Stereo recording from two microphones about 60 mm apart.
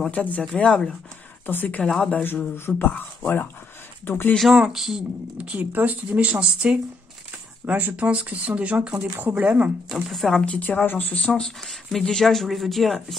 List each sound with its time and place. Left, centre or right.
0.1 s speech: left
1.4 s speech: left
1.8 s speech: centre
2.2 s speech: left
4.0 s speech: left
4.6 s speech: centre
5.4 s speech: right
10.0 s speech: centre
10.4 s speech: left
11.2 s speech: centre